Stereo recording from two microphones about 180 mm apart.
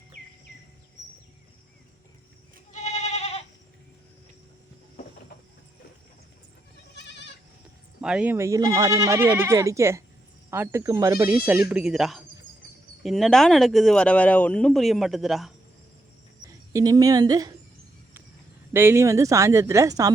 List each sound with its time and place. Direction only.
2.7 s goat: 40° left (ahead or behind)
6.9 s goat: 75° left (ahead or behind)
8.0 s speech: 5° right (ahead or behind)
16.7 s a woman's voice: 20° right (ahead or behind)
18.7 s speech: 15° right (ahead or behind)